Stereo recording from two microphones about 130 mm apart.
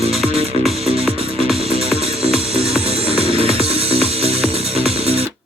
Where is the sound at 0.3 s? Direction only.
50° right (ahead or behind).